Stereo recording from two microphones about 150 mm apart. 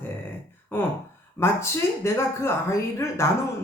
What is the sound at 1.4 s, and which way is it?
Speech, 15° left (ahead or behind).